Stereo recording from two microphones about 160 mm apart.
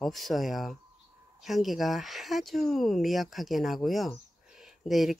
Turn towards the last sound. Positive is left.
turn(degrees=0)  # may be behind; listen again after turning